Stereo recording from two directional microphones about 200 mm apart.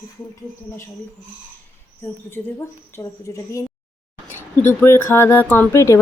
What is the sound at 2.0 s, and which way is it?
Speech, 10° left (ahead or behind).